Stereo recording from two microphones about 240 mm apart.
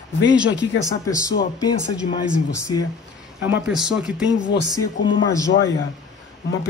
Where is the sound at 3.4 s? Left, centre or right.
Centre.